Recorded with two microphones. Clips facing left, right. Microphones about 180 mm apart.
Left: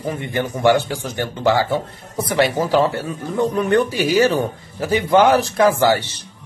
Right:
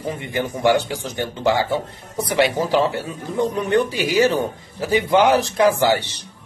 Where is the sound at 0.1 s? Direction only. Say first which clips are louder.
Left 2 dB; 20° right (ahead or behind).